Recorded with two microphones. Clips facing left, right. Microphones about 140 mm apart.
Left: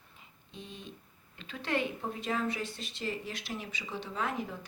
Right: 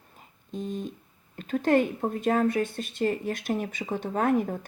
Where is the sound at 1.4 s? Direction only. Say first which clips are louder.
Right 11 dB; 45° right (ahead or behind).